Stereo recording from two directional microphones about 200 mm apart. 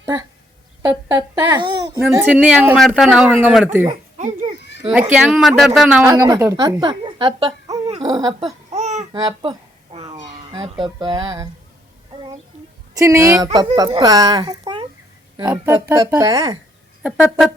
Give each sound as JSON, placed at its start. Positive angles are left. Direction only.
{"t": 0.8, "sound": "babbling", "side_deg": -20}
{"t": 2.0, "sound": "speech", "side_deg": -10}
{"t": 6.1, "sound": "speech", "side_deg": -20}
{"t": 8.7, "sound": "babbling", "side_deg": -35}
{"t": 9.1, "sound": "a sound", "side_deg": -20}
{"t": 10.5, "sound": "speech", "side_deg": -25}
{"t": 12.9, "sound": "speech", "side_deg": -15}
{"t": 17.0, "sound": "speech", "side_deg": 0}